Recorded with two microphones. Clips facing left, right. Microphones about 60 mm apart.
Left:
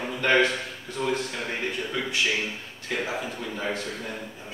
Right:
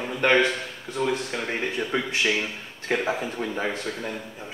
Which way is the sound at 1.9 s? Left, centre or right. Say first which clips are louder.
Right 2 dB; right.